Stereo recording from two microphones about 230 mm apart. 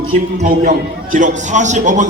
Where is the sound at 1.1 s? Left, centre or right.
Right.